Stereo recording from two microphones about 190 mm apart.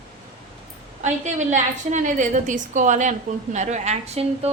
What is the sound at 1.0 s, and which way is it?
A woman's voice, 40° right (ahead or behind).